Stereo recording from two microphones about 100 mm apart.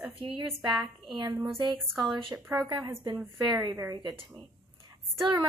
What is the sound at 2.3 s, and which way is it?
Speech, 35° right (ahead or behind).